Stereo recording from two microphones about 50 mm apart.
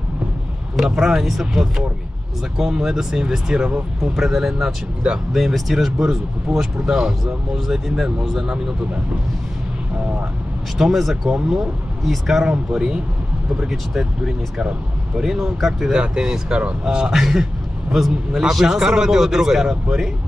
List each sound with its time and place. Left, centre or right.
0.7 s speech: centre
4.0 s speech: centre
5.9 s speech: centre
10.8 s speech: centre
16.0 s speech: centre
17.1 s speech: centre